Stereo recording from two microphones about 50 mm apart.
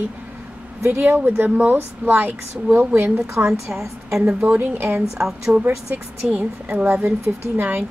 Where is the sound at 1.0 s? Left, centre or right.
Right.